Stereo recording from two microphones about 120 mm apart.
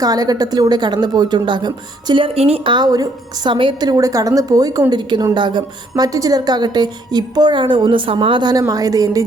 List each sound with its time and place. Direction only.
0.0 s a woman's voice: 30° right (ahead or behind); by 2.7 s 55° right (ahead or behind)
2.7 s a woman's voice: 30° right (ahead or behind)